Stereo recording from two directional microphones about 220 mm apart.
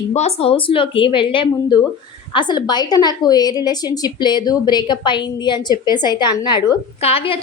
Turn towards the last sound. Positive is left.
turn(degrees=25)  # may be behind; listen again after turning